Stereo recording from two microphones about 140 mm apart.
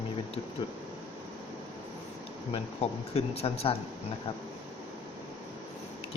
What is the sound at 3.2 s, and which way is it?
Speech, 45° left (ahead or behind).